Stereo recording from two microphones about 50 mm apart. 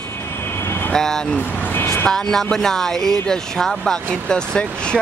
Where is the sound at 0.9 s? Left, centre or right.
Centre.